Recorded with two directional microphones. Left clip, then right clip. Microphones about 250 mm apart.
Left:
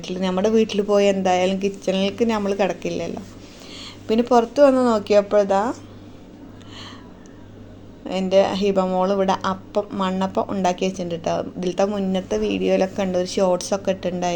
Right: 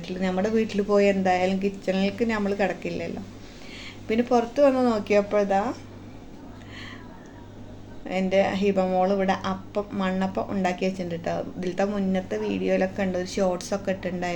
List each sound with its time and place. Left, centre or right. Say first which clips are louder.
0.0 s speech: left 5 dB; left
8.0 s speech: left 5 dB; left